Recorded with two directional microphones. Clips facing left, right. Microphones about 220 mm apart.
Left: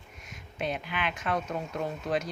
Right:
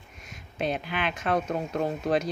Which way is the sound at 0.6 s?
35° right (ahead or behind).